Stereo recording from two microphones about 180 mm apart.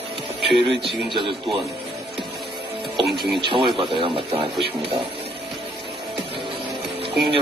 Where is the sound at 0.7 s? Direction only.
30° right (ahead or behind).